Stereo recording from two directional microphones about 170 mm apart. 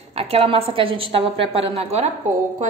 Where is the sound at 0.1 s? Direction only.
35° right (ahead or behind).